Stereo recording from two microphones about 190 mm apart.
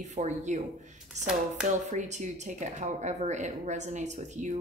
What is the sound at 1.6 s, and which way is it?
Speech, 40° right (ahead or behind).